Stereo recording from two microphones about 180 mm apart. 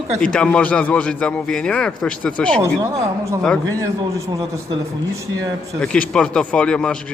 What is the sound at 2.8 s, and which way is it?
Speech, 20° right (ahead or behind).